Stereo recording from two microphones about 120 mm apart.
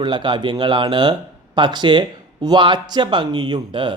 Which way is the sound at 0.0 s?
40° right (ahead or behind).